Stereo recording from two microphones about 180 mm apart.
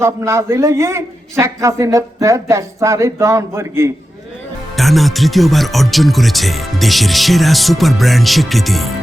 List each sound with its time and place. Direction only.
0.0 s a man's voice: 15° right (ahead or behind)
4.8 s speech: centre (ahead or behind)